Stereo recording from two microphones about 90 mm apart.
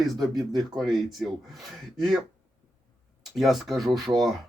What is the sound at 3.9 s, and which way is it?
Speech, 55° right (ahead or behind).